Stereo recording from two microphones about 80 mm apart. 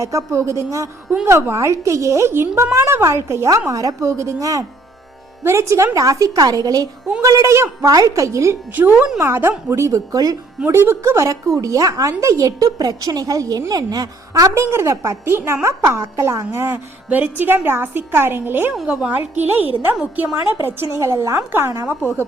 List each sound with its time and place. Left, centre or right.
0.0 s a woman's voice: right
5.4 s a woman's voice: right
10.7 s a woman's voice: right
16.5 s a woman's voice: right
18.9 s a woman's voice: centre
19.1 s a woman's voice: right
20.5 s a woman's voice: right